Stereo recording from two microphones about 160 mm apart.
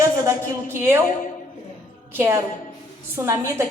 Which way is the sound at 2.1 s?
15° right (ahead or behind).